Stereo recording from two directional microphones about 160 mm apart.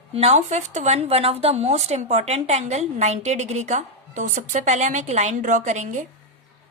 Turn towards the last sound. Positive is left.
turn(degrees=-50)  # may be behind; listen again after turning